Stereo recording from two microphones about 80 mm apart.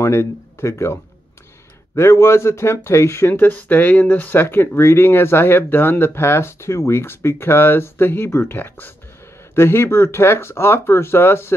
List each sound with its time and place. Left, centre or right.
0.0 s speech: left
2.0 s speech: left